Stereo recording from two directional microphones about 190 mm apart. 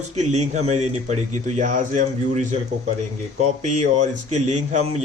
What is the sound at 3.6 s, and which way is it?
A man's voice, 40° right (ahead or behind).